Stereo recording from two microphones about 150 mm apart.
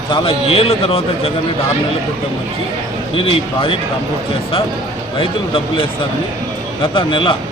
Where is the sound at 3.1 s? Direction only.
35° left (ahead or behind).